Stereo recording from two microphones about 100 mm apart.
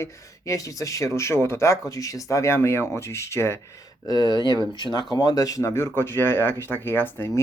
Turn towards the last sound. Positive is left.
turn(degrees=20)  # may be behind; listen again after turning